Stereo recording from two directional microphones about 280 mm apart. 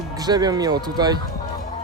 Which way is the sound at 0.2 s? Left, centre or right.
Centre.